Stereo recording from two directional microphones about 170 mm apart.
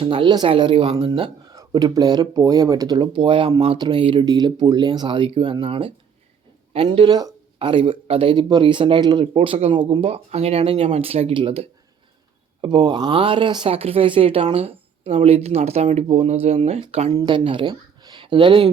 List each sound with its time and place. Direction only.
0.0 s speech: 30° right (ahead or behind)